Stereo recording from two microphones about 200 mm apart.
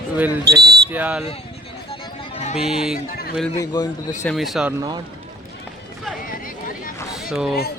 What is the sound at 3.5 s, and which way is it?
Speech, 20° left (ahead or behind).